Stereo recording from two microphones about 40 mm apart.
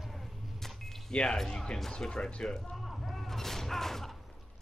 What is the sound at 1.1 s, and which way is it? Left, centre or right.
Speech, left.